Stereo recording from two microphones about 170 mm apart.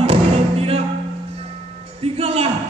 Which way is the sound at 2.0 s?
35° right (ahead or behind).